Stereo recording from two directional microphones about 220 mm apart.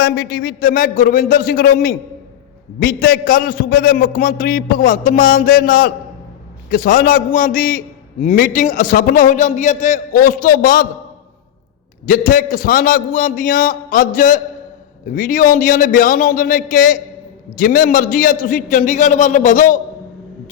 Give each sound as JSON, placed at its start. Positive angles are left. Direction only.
{"t": 0.0, "sound": "a man's voice", "side_deg": 45}
{"t": 12.0, "sound": "a man's voice", "side_deg": 35}